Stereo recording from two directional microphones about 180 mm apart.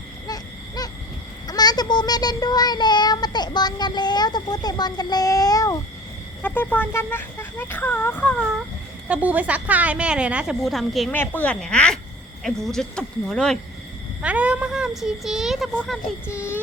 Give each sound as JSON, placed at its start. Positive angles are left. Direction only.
{"t": 0.8, "sound": "owl", "side_deg": 20}
{"t": 1.5, "sound": "child singing", "side_deg": 20}
{"t": 6.4, "sound": "speech", "side_deg": 10}
{"t": 9.0, "sound": "a woman's voice", "side_deg": -5}
{"t": 14.2, "sound": "speech", "side_deg": -5}
{"t": 16.3, "sound": "speech", "side_deg": 15}